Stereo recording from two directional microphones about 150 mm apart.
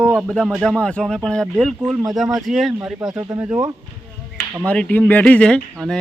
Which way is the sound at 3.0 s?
25° right (ahead or behind).